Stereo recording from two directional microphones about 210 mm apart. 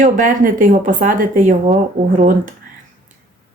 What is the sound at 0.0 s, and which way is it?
Speech, 40° right (ahead or behind).